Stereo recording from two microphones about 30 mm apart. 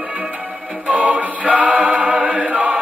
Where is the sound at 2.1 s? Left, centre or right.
Right.